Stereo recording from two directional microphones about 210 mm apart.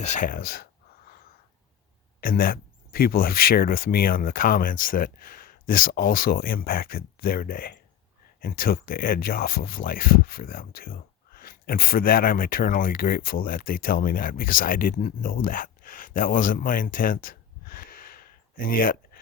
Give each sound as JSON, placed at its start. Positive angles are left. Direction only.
{"t": 0.0, "sound": "speech", "side_deg": 35}
{"t": 2.2, "sound": "speech", "side_deg": 45}